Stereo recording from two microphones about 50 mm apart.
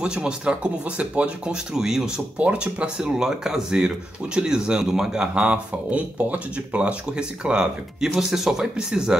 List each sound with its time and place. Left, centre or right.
0.0 s speech: centre
2.3 s speech: right